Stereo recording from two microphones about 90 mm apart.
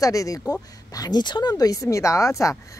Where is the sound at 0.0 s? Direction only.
40° left (ahead or behind).